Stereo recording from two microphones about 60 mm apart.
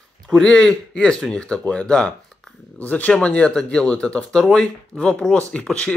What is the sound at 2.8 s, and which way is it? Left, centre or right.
Speech, left.